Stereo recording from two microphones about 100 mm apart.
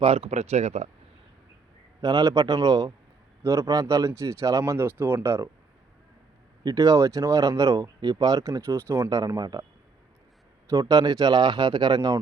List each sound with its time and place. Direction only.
0.0 s speech: 85° right
2.0 s speech: 40° right (ahead or behind)
3.4 s speech: 30° right (ahead or behind)
6.6 s speech: 40° right (ahead or behind)
9.0 s speech: 40° right (ahead or behind)
10.7 s speech: 35° right (ahead or behind)